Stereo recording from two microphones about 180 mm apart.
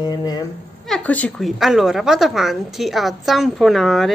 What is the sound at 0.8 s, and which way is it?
A woman's voice, 5° left (ahead or behind).